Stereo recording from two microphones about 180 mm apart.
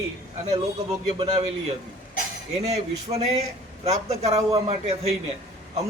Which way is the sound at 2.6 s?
35° right (ahead or behind).